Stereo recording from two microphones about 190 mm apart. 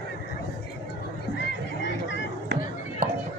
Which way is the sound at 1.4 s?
60° left (ahead or behind).